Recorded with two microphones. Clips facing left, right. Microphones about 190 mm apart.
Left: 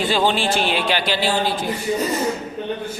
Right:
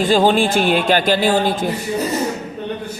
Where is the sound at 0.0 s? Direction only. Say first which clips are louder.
Right 5 dB; 45° right (ahead or behind).